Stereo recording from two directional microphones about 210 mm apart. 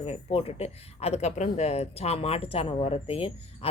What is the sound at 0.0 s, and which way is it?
Speech, 30° left (ahead or behind).